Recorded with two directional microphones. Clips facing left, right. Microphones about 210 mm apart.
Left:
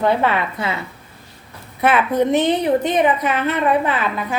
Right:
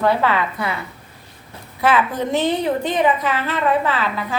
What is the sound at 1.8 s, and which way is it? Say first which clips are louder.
A woman's voice: left 3 dB; 20° left (ahead or behind).